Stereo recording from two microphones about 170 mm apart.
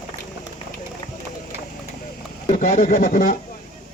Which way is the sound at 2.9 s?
55° left (ahead or behind).